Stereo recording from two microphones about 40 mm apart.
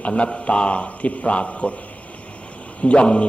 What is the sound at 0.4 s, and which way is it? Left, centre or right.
A man's voice, left.